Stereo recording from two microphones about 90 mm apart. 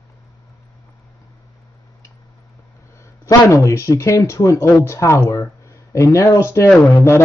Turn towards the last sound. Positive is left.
turn(degrees=30)  # may be behind; listen again after turning